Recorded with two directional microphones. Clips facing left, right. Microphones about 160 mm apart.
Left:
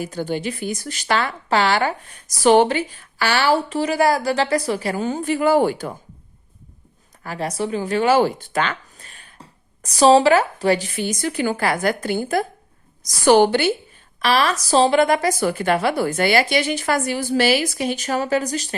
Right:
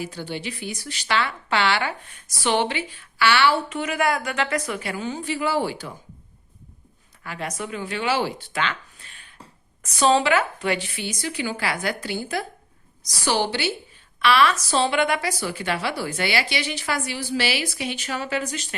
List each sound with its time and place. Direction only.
0.0 s speech: 45° left (ahead or behind)
7.3 s speech: 35° left (ahead or behind); by 13.7 s 50° left (ahead or behind)
14.2 s speech: 40° left (ahead or behind)